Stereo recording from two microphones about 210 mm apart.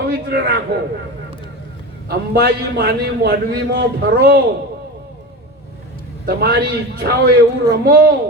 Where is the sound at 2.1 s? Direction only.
45° right (ahead or behind).